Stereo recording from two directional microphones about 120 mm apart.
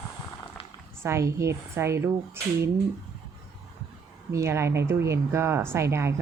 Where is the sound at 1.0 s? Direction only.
25° right (ahead or behind).